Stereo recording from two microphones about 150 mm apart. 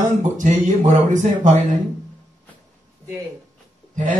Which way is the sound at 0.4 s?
55° right (ahead or behind).